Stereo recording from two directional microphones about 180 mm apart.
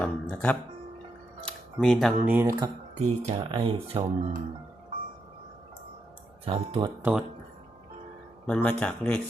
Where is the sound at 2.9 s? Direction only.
40° right (ahead or behind).